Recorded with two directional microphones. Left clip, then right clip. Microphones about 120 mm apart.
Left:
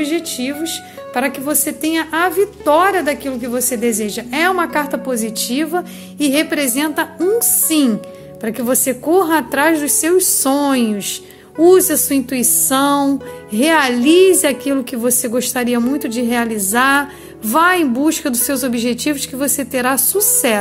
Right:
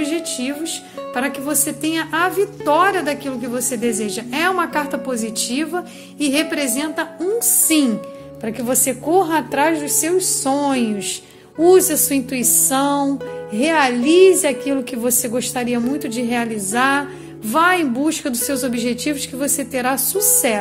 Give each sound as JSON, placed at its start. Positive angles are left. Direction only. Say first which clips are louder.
{"t": 0.0, "sound": "a woman's voice", "louder": "left 3 dB", "side_deg": 30}
{"t": 6.6, "sound": "a woman's voice", "louder": "left 4 dB", "side_deg": 55}
{"t": 7.6, "sound": "a woman's voice", "louder": "left 1 dB", "side_deg": 25}